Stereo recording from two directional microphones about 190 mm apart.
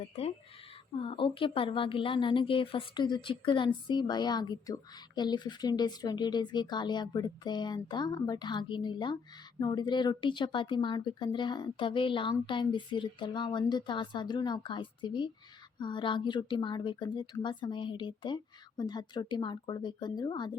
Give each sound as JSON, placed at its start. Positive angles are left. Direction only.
{"t": 0.0, "sound": "a woman's voice", "side_deg": 35}